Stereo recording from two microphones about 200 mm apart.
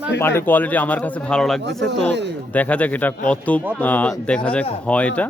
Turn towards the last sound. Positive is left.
turn(degrees=5)  # may be behind; listen again after turning